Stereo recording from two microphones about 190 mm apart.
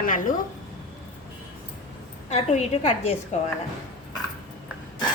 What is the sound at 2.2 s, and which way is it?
Speech, 35° left (ahead or behind).